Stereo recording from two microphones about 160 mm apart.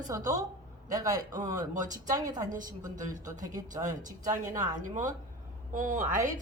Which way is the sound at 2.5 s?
55° right (ahead or behind).